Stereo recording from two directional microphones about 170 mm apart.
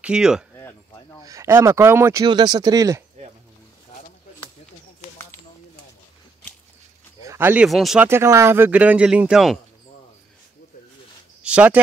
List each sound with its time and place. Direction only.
0.0 s speech: 5° right (ahead or behind)
1.2 s speech: 20° right (ahead or behind)
2.2 s speech: 25° right (ahead or behind)
7.2 s speech: 10° right (ahead or behind)
8.1 s speech: 15° right (ahead or behind)
11.4 s speech: 5° right (ahead or behind)